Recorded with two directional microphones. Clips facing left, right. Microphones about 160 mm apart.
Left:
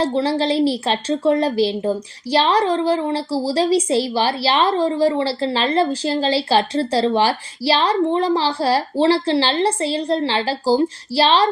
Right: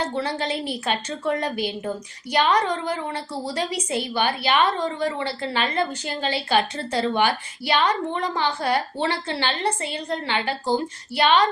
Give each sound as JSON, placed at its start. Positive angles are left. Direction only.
{"t": 0.0, "sound": "a woman's voice", "side_deg": 30}